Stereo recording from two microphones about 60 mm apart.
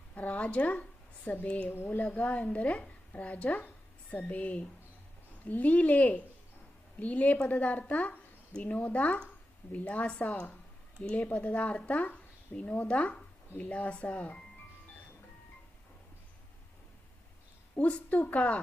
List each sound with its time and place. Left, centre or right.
0.1 s a sound: left
1.6 s speech: left
17.7 s speech: left